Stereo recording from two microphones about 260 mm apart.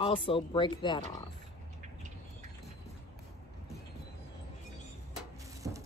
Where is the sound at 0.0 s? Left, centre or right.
Centre.